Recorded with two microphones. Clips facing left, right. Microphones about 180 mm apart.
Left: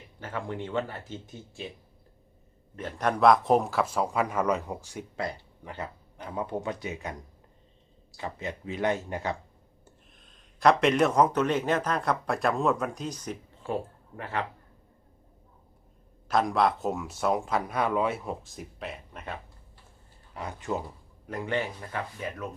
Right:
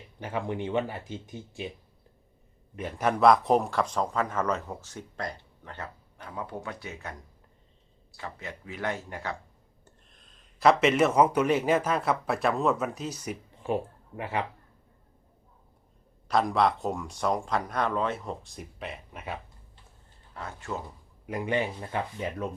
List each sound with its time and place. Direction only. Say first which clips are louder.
0.2 s speech: right 3 dB; 15° right (ahead or behind)
2.7 s a man's voice: right 1 dB; 10° right (ahead or behind); by 9.3 s 20° left (ahead or behind)
9.8 s speech: left 2 dB; centre (ahead or behind)
16.3 s speech: even; centre (ahead or behind)
20.3 s a man's voice: left 4 dB; 15° left (ahead or behind)
21.2 s speech: right 2 dB; 15° right (ahead or behind)